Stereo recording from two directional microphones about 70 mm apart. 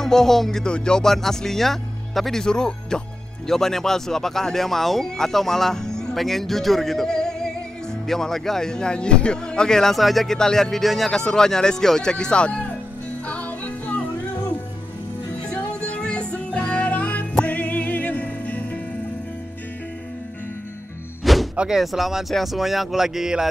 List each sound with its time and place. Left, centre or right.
0.0 s speech: centre
13.3 s music: left
16.0 s music: centre
21.2 s music: centre
21.5 s speech: centre